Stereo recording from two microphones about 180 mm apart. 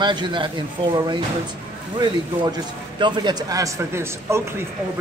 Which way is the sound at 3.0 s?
25° right (ahead or behind).